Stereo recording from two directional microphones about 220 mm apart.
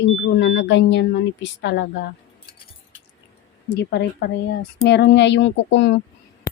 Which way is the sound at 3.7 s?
50° left (ahead or behind).